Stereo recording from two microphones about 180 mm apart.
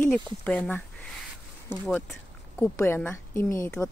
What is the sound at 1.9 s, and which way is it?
Speech, 5° left (ahead or behind).